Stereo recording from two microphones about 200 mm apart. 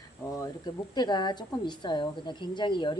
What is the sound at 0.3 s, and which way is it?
Speech, 20° left (ahead or behind).